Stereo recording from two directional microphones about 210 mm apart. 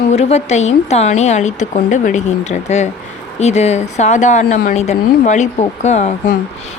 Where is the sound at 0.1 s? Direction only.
30° left (ahead or behind).